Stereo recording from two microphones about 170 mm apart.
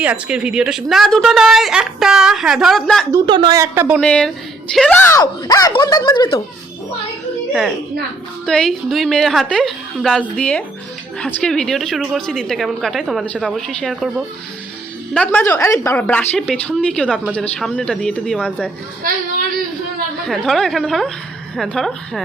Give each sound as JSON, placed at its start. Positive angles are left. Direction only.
{"t": 0.0, "sound": "a woman's voice", "side_deg": -5}
{"t": 3.2, "sound": "a woman's voice", "side_deg": -30}
{"t": 3.6, "sound": "speech", "side_deg": -10}
{"t": 4.0, "sound": "a woman's voice", "side_deg": 5}
{"t": 5.2, "sound": "speech", "side_deg": 20}
{"t": 8.4, "sound": "a woman's voice", "side_deg": 0}
{"t": 15.1, "sound": "a woman's voice", "side_deg": 10}
{"t": 20.2, "sound": "a woman's voice", "side_deg": 0}